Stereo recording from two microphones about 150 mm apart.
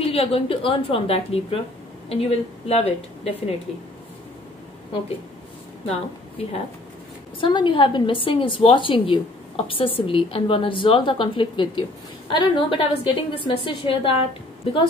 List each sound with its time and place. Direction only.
0.0 s a woman's voice: 40° left (ahead or behind)
5.9 s a woman's voice: 40° left (ahead or behind)